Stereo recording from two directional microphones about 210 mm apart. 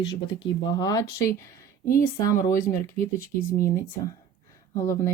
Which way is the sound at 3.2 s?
45° left (ahead or behind).